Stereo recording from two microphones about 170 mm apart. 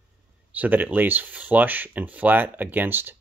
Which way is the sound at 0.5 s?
10° right (ahead or behind).